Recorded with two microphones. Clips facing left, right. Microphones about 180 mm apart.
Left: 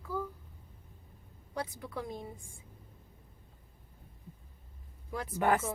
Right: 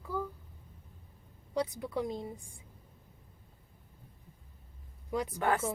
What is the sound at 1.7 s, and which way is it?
Speech, 20° right (ahead or behind).